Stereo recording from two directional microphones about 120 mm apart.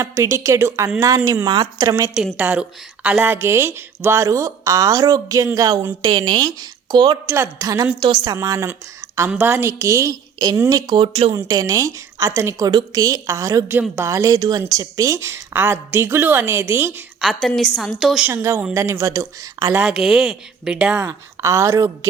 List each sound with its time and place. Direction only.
0.0 s a woman's voice: 25° right (ahead or behind)
2.1 s a woman's voice: 10° right (ahead or behind); by 7.2 s 35° right (ahead or behind)
7.3 s a woman's voice: 25° right (ahead or behind)
11.0 s speech: 50° right (ahead or behind)
11.3 s a woman's voice: 30° right (ahead or behind)
17.2 s speech: centre (ahead or behind)
18.3 s a woman's voice: 20° right (ahead or behind)
19.8 s speech: 5° right (ahead or behind)
21.1 s a woman's voice: 25° right (ahead or behind)